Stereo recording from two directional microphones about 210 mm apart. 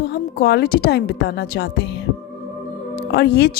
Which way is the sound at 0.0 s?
50° left (ahead or behind).